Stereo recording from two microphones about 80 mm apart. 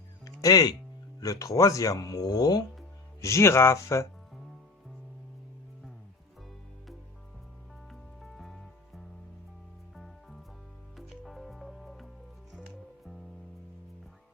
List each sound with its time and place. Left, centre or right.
0.4 s speech: left
3.2 s speech: left
7.9 s music: centre